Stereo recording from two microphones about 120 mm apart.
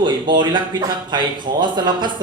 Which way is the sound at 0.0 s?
40° right (ahead or behind).